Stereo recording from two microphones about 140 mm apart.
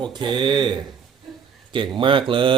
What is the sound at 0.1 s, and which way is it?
Speech, 35° right (ahead or behind).